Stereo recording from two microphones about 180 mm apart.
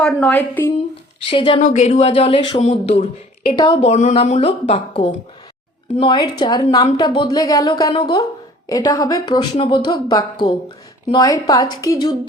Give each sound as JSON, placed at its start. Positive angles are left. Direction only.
{"t": 0.0, "sound": "a woman's voice", "side_deg": 10}
{"t": 1.3, "sound": "speech", "side_deg": 30}
{"t": 1.6, "sound": "speech", "side_deg": 40}